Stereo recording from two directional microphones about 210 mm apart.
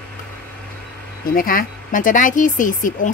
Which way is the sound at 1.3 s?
40° left (ahead or behind).